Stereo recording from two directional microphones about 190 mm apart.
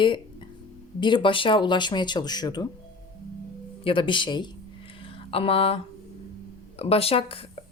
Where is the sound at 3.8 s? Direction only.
25° left (ahead or behind).